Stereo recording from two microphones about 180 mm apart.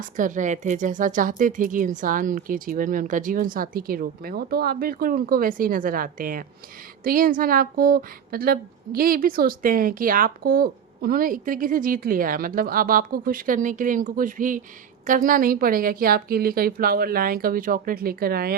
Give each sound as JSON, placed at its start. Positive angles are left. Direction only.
{"t": 0.2, "sound": "a woman's voice", "side_deg": -45}